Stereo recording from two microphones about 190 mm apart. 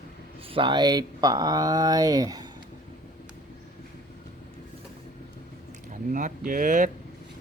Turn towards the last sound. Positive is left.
turn(degrees=-45)  # may be behind; listen again after turning